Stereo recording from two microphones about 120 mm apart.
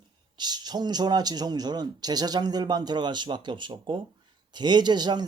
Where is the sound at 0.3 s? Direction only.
35° right (ahead or behind).